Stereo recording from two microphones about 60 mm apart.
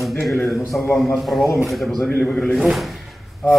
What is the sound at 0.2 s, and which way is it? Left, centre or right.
Speech, left.